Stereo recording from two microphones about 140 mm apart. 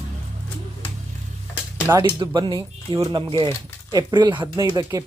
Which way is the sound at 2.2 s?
30° right (ahead or behind).